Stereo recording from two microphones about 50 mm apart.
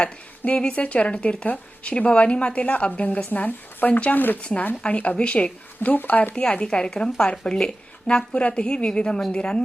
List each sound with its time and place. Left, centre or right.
0.6 s speech: left
4.7 s speech: left
6.3 s speech: left